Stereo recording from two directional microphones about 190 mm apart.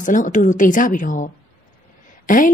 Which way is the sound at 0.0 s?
40° left (ahead or behind).